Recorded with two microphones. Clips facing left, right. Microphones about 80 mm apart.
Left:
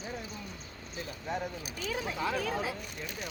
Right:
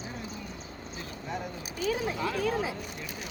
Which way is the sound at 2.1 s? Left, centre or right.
Left.